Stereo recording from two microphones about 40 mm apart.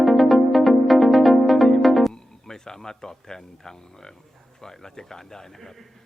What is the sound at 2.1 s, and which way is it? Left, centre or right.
Speech, centre.